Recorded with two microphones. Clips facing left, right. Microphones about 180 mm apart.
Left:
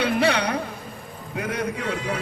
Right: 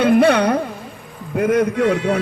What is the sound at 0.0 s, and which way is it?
Carnatic music, 55° right (ahead or behind).